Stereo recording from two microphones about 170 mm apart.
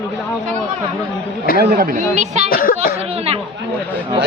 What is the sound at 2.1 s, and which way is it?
Speech, 45° right (ahead or behind).